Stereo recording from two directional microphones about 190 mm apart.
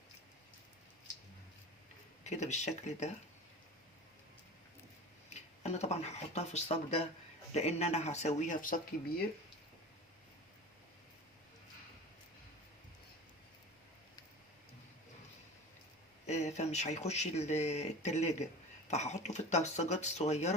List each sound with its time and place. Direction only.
2.2 s speech: 35° left (ahead or behind)
5.3 s speech: 35° left (ahead or behind)
16.2 s speech: 35° left (ahead or behind)